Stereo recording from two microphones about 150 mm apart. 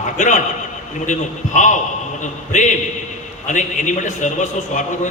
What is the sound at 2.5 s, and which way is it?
A man's voice, 55° left (ahead or behind).